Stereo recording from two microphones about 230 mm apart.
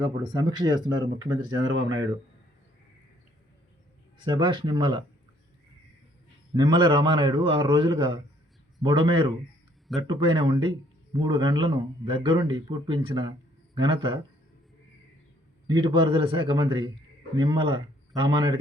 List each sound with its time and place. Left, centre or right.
0.0 s speech: centre
0.9 s speech: right
4.2 s speech: centre
6.6 s speech: right
15.6 s speech: right